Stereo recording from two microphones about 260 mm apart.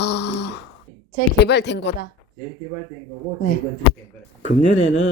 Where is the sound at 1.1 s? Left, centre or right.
Left.